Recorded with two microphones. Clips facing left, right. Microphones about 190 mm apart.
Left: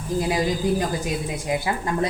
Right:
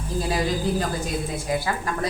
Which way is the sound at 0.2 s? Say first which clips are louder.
Left 1 dB; 15° left (ahead or behind).